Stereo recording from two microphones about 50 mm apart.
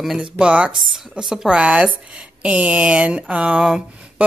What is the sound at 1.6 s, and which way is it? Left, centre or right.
Speech, right.